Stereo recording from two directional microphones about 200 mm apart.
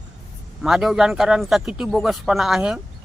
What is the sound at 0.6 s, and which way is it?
Speech, centre (ahead or behind).